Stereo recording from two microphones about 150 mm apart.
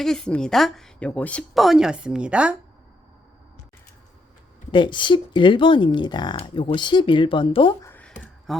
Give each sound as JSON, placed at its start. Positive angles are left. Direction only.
{"t": 0.0, "sound": "a woman's voice", "side_deg": 5}
{"t": 4.7, "sound": "speech", "side_deg": 30}
{"t": 7.8, "sound": "a sound", "side_deg": 15}
{"t": 8.5, "sound": "a woman's voice", "side_deg": 0}